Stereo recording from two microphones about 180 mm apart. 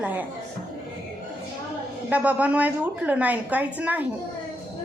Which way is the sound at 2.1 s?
10° right (ahead or behind).